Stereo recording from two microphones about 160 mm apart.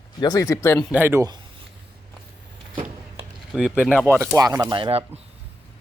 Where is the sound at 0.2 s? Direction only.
20° left (ahead or behind).